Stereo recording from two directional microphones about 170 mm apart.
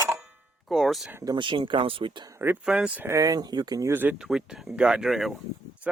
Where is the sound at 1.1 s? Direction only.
20° right (ahead or behind).